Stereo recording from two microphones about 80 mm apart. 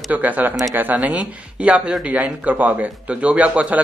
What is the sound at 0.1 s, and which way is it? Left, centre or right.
A man's voice, right.